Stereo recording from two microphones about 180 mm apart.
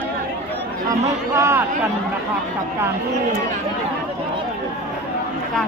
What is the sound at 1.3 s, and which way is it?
Speech, 15° right (ahead or behind).